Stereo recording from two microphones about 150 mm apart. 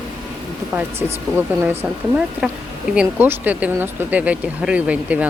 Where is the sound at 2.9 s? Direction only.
10° right (ahead or behind).